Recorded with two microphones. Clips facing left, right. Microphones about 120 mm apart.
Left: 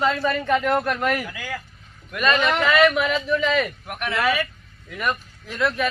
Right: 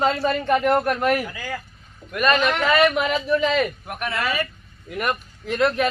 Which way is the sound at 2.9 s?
40° right (ahead or behind).